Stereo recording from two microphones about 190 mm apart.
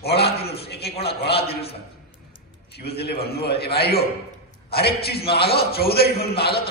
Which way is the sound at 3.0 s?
55° left (ahead or behind).